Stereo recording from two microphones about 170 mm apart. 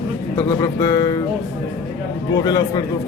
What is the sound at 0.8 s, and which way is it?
Speech, 25° left (ahead or behind).